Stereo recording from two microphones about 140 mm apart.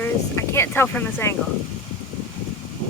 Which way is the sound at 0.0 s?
20° left (ahead or behind).